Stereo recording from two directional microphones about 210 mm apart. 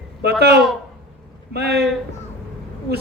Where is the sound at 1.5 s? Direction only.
50° right (ahead or behind).